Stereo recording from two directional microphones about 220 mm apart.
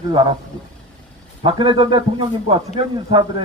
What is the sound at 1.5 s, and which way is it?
Speech, 20° right (ahead or behind).